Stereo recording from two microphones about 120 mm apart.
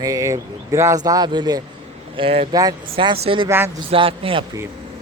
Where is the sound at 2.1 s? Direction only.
50° right (ahead or behind).